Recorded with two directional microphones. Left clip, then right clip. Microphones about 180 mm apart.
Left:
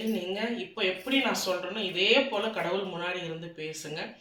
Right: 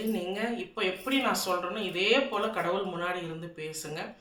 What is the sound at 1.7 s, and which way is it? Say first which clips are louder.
Speech: left 3 dB; 25° right (ahead or behind).